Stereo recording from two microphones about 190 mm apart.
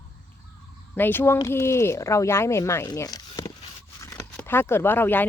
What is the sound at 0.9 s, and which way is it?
Speech, 10° left (ahead or behind).